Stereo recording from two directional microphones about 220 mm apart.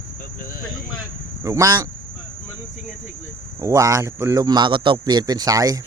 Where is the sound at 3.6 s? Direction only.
15° right (ahead or behind).